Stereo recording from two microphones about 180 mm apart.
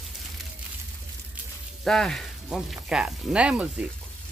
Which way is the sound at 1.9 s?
Centre (ahead or behind).